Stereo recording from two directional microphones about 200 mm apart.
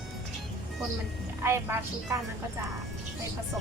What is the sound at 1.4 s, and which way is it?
Speech, 15° right (ahead or behind).